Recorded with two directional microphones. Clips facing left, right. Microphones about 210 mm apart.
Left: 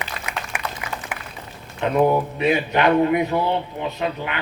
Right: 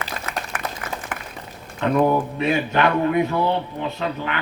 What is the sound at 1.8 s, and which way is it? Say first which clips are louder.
A man's voice: even; 15° left (ahead or behind).